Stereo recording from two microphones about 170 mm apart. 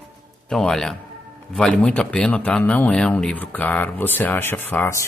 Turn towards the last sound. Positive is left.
turn(degrees=15)  # may be behind; listen again after turning